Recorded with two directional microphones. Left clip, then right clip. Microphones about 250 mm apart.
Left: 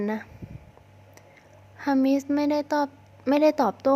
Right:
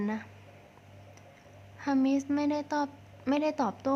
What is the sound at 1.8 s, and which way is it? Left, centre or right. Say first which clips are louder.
A woman's voice: left 5 dB; centre.